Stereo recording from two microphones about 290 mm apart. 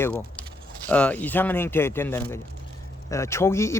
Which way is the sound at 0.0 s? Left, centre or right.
Centre.